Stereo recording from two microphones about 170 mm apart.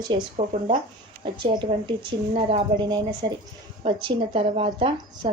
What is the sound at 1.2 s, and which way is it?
A woman's voice, 25° right (ahead or behind).